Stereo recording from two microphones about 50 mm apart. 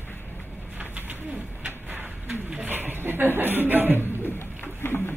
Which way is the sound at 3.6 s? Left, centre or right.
Right.